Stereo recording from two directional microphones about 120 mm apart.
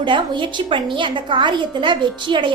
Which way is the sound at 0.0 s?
40° right (ahead or behind).